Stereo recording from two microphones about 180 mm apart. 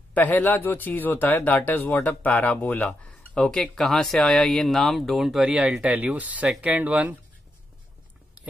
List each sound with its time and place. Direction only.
0.1 s speech: 10° left (ahead or behind); by 7.2 s 10° right (ahead or behind)